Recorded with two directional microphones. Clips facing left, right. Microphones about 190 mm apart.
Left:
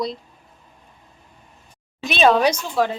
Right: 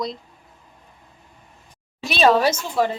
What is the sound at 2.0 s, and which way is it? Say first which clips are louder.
Speech: left 1 dB; centre (ahead or behind).